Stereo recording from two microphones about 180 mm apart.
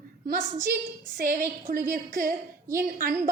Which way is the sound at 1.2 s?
55° right (ahead or behind).